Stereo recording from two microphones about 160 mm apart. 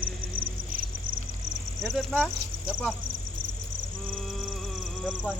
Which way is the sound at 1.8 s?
Centre (ahead or behind).